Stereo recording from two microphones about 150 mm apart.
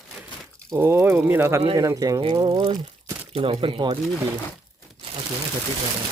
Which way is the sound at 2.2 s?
35° right (ahead or behind).